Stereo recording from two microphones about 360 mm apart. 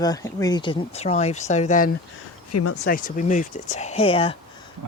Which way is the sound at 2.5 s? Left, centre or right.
Left.